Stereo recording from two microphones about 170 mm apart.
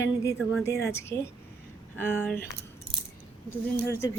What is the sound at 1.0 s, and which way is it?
A woman's voice, 15° left (ahead or behind).